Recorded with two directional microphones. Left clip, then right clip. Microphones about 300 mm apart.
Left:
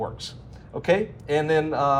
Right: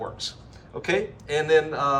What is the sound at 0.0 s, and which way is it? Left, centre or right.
A man's voice, centre.